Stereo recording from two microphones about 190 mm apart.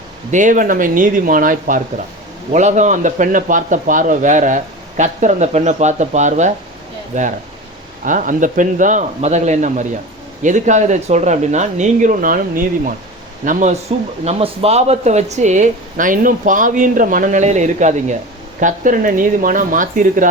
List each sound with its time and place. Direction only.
0.3 s a man's voice: 40° right (ahead or behind)
14.3 s a man's voice: 30° right (ahead or behind)